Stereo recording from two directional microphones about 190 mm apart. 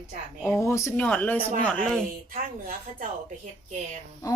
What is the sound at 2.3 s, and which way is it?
Speech, 50° right (ahead or behind).